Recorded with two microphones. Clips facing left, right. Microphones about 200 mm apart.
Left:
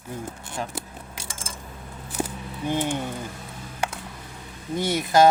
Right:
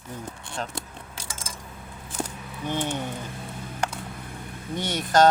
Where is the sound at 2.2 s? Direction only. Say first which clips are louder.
Left 3 dB; 10° left (ahead or behind).